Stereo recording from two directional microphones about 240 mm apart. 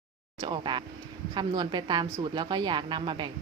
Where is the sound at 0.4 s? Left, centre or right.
Centre.